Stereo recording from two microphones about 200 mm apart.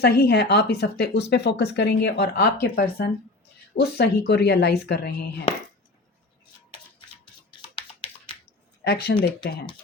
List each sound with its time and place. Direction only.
0.0 s a woman's voice: 50° left (ahead or behind)
8.8 s speech: 55° left (ahead or behind)